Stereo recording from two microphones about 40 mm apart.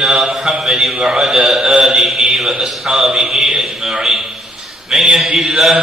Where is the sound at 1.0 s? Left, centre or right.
Centre.